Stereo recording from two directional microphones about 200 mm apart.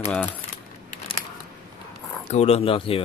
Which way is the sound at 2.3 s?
30° left (ahead or behind).